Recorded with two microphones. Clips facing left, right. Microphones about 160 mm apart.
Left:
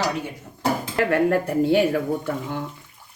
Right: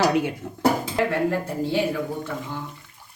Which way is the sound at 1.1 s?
60° left (ahead or behind).